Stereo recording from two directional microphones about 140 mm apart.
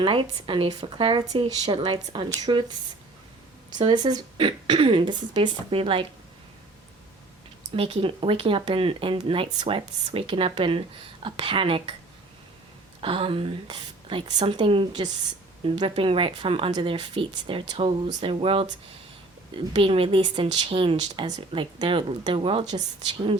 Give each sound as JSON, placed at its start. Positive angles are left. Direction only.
{"t": 0.0, "sound": "speech", "side_deg": -40}
{"t": 3.8, "sound": "speech", "side_deg": -30}
{"t": 7.8, "sound": "speech", "side_deg": -40}
{"t": 13.0, "sound": "speech", "side_deg": -40}